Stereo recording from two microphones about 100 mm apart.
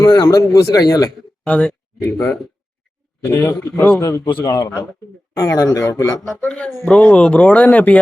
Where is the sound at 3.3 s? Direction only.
25° left (ahead or behind).